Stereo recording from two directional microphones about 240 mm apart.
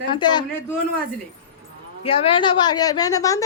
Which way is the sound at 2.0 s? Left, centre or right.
Left.